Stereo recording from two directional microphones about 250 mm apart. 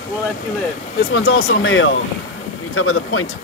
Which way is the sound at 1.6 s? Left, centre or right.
Left.